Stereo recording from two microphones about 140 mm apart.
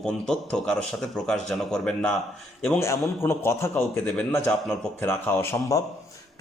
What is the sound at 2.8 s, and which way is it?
A man's voice, 20° left (ahead or behind).